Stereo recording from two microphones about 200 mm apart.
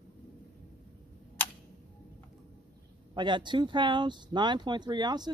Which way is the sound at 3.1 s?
25° right (ahead or behind).